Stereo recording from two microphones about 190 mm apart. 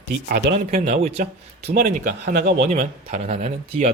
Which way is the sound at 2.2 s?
60° right (ahead or behind).